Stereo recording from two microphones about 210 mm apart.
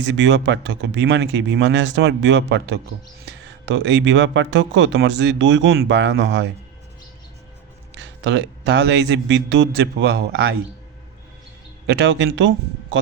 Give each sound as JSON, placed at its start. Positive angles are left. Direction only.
{"t": 0.0, "sound": "speech", "side_deg": -55}
{"t": 7.9, "sound": "speech", "side_deg": -60}
{"t": 11.9, "sound": "speech", "side_deg": -55}